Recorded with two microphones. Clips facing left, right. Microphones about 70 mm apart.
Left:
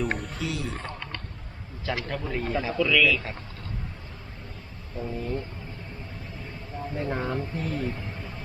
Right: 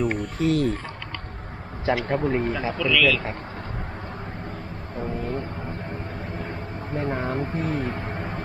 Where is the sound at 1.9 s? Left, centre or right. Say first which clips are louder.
Right 8 dB; right.